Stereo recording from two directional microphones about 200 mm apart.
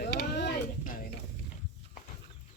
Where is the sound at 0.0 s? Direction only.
50° left (ahead or behind).